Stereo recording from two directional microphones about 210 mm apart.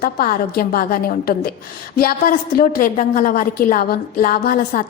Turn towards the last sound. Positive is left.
turn(degrees=40)  # may be behind; listen again after turning